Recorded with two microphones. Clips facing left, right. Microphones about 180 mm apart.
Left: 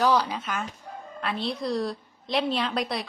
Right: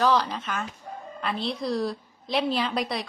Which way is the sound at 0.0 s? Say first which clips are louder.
Even; 10° left (ahead or behind).